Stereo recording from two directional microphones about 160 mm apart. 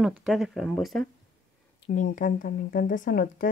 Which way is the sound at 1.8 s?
60° left (ahead or behind).